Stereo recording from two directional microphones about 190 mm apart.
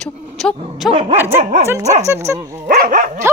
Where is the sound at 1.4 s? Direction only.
35° right (ahead or behind).